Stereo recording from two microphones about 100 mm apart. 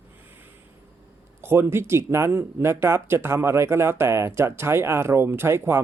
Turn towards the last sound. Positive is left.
turn(degrees=-25)  # may be behind; listen again after turning